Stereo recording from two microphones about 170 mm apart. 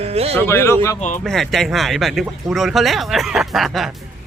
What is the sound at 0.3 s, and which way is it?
Speech, 15° left (ahead or behind).